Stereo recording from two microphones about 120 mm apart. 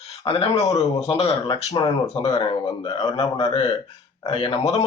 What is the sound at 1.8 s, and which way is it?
Speech, 35° left (ahead or behind).